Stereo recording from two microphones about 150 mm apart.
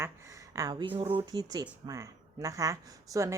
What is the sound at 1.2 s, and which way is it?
Speech, 25° right (ahead or behind).